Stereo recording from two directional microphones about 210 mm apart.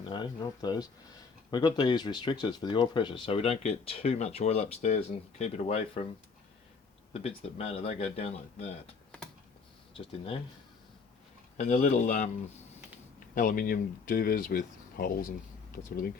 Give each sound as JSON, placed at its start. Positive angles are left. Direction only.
{"t": 0.0, "sound": "speech", "side_deg": 20}
{"t": 7.1, "sound": "speech", "side_deg": 30}
{"t": 10.0, "sound": "speech", "side_deg": 25}
{"t": 11.5, "sound": "speech", "side_deg": 35}